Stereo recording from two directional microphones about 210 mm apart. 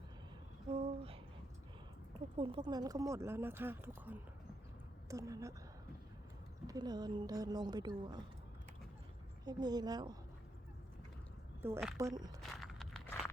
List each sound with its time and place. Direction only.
0.7 s a sound: 25° right (ahead or behind)
2.4 s speech: 20° right (ahead or behind)
6.7 s speech: 20° right (ahead or behind)
9.4 s speech: 20° right (ahead or behind)
11.6 s speech: 10° right (ahead or behind)
12.4 s walk: centre (ahead or behind)